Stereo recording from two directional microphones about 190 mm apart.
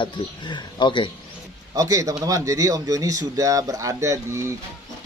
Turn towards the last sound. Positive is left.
turn(degrees=-15)  # may be behind; listen again after turning